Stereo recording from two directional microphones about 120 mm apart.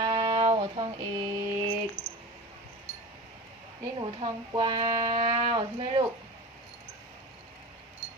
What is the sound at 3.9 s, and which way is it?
Speech, 40° right (ahead or behind).